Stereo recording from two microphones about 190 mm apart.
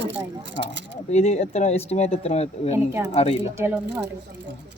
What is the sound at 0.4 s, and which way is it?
Speech, 70° right (ahead or behind).